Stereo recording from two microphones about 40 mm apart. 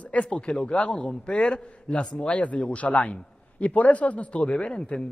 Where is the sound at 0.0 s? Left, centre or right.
Left.